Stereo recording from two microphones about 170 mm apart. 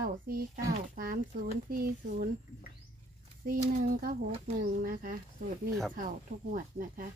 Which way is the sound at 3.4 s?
55° right (ahead or behind).